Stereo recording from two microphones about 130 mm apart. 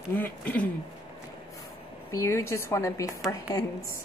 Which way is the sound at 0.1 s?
15° left (ahead or behind).